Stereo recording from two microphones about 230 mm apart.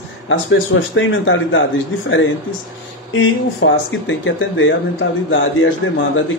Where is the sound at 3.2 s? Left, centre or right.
Left.